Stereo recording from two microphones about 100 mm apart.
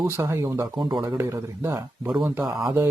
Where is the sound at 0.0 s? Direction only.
30° right (ahead or behind).